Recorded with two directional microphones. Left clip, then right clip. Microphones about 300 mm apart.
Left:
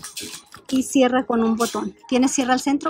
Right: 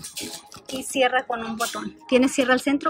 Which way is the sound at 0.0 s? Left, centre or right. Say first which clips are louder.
Left 1 dB; centre.